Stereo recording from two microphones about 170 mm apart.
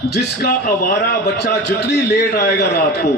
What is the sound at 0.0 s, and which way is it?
A man's voice, 75° left (ahead or behind).